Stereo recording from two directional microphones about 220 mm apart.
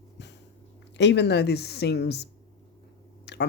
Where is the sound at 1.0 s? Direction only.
50° left (ahead or behind).